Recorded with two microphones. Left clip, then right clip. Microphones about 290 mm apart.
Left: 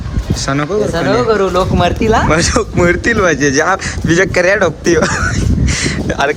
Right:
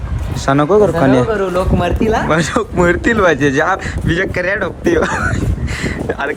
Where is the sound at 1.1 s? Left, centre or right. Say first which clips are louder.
Left 2 dB; left.